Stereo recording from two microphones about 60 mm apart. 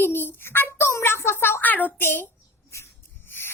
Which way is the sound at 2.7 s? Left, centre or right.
Left.